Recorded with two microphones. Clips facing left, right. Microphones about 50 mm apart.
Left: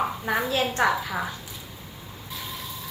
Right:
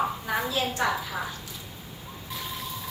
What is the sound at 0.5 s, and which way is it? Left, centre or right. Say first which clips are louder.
Speech: left 5 dB; left.